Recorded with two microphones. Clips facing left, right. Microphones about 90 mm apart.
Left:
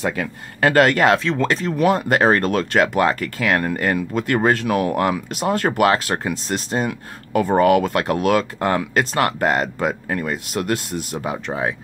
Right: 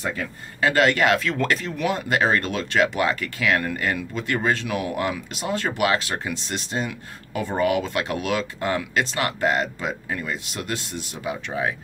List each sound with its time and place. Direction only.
0.0 s speech: 90° left
0.6 s speech: 50° left (ahead or behind)
1.2 s speech: 25° left (ahead or behind)
1.7 s speech: 45° left (ahead or behind)